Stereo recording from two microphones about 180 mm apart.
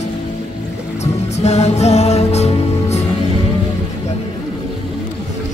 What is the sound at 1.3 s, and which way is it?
Music, 35° left (ahead or behind).